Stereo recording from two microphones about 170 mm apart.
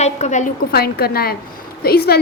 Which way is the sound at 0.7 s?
65° left (ahead or behind).